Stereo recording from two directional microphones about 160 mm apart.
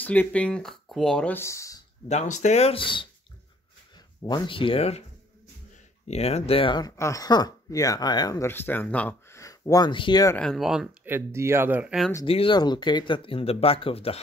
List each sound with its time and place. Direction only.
0.0 s speech: 10° left (ahead or behind)
2.0 s speech: 45° left (ahead or behind); by 3.1 s 30° left (ahead or behind)
4.2 s speech: 30° left (ahead or behind)
6.0 s speech: 40° left (ahead or behind)
7.0 s speech: 20° left (ahead or behind)
10.4 s speech: centre (ahead or behind)
12.3 s speech: 35° left (ahead or behind)